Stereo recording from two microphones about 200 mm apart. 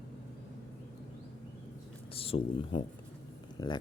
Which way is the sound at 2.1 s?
30° left (ahead or behind).